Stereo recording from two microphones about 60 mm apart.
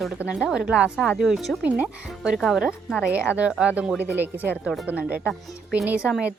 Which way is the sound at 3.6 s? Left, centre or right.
Right.